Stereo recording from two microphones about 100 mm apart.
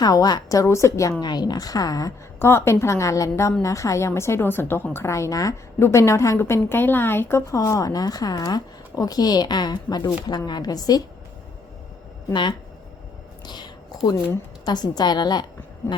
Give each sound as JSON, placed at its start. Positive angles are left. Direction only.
{"t": 0.0, "sound": "a woman's voice", "side_deg": 40}
{"t": 1.2, "sound": "a woman's voice", "side_deg": 45}
{"t": 2.4, "sound": "a woman's voice", "side_deg": 25}
{"t": 12.3, "sound": "a woman's voice", "side_deg": 50}
{"t": 13.4, "sound": "a sound", "side_deg": 45}
{"t": 14.6, "sound": "a woman's voice", "side_deg": 45}